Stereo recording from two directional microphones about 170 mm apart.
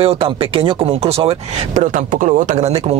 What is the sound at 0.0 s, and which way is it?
Speech, 35° right (ahead or behind).